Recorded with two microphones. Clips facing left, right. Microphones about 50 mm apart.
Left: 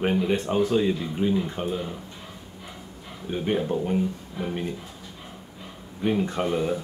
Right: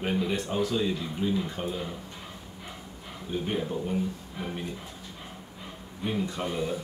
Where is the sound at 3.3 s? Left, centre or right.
Left.